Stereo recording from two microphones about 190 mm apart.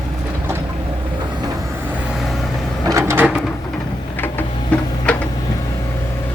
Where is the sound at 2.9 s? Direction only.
10° right (ahead or behind).